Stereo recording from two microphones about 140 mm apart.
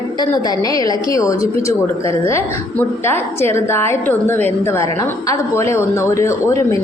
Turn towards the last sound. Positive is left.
turn(degrees=20)  # may be behind; listen again after turning